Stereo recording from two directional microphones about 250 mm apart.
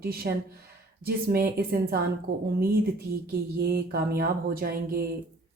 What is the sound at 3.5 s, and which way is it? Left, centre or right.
A woman's voice, right.